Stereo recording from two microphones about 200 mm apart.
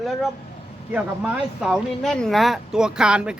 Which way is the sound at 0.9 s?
5° right (ahead or behind).